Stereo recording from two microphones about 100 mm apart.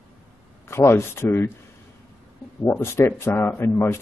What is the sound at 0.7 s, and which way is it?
Speech, 25° left (ahead or behind).